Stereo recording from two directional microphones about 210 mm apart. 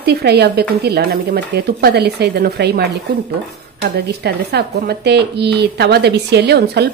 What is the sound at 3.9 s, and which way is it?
Speech, 50° right (ahead or behind).